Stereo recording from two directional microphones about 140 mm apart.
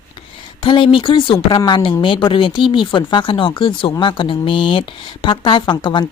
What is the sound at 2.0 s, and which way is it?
Speech, 35° left (ahead or behind).